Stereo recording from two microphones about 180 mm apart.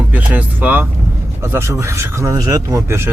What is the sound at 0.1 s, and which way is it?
Speech, 10° right (ahead or behind).